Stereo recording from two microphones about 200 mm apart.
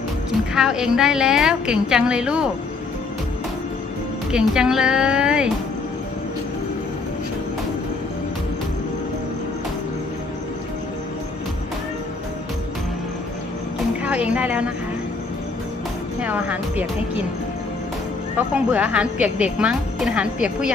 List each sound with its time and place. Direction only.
0.5 s a woman's voice: 5° right (ahead or behind)
4.3 s a woman's voice: 5° right (ahead or behind)
14.0 s a woman's voice: 5° right (ahead or behind)
16.2 s speech: 5° right (ahead or behind)
18.3 s a woman's voice: 5° right (ahead or behind)